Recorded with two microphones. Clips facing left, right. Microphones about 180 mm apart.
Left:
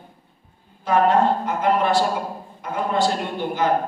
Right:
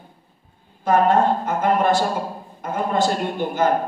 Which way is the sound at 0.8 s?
45° right (ahead or behind).